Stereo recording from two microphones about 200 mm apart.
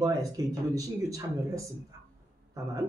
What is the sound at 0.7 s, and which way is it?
Speech, 15° right (ahead or behind).